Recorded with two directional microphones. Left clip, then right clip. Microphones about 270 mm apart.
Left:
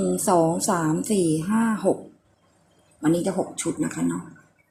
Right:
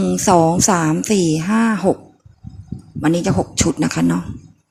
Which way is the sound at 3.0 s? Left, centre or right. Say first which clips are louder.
Right 5 dB; right.